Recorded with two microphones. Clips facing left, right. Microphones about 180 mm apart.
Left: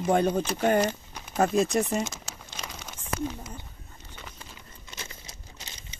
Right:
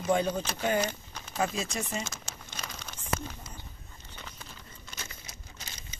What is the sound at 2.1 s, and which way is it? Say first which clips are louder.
Crumpling: left 2 dB; 15° left (ahead or behind).